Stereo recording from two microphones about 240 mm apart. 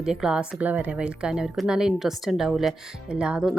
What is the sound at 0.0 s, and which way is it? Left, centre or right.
A woman's voice, centre.